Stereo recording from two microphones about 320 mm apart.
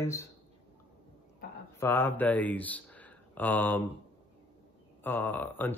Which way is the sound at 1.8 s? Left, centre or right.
Centre.